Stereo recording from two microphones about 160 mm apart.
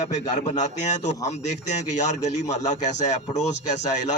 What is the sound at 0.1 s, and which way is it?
A man's voice, 50° left (ahead or behind).